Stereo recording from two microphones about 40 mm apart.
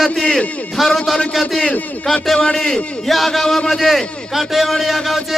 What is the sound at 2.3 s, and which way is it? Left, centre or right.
Speech, centre.